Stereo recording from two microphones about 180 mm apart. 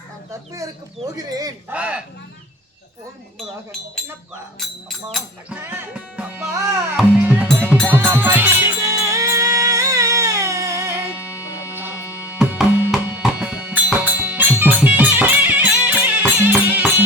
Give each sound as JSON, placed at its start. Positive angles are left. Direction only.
{"t": 1.1, "sound": "speech", "side_deg": -20}
{"t": 1.7, "sound": "speech", "side_deg": -5}
{"t": 4.6, "sound": "speech", "side_deg": 0}
{"t": 5.6, "sound": "speech", "side_deg": -10}
{"t": 6.9, "sound": "music", "side_deg": -10}